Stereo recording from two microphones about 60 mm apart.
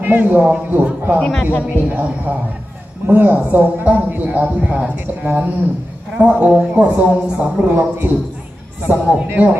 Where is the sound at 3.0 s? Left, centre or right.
Right.